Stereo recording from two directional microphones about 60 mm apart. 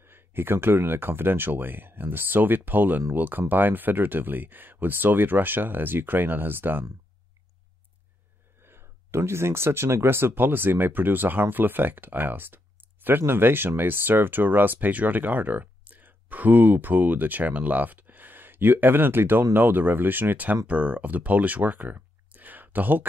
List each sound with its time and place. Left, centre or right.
0.0 s speech: right
8.6 s speech: right